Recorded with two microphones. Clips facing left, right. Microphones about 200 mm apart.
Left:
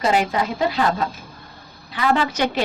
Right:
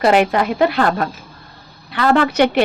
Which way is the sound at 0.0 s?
65° right (ahead or behind).